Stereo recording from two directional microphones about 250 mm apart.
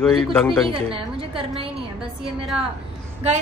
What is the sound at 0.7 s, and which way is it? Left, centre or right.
A woman's voice, right.